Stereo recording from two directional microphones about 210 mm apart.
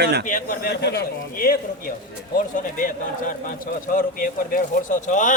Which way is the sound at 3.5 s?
40° left (ahead or behind).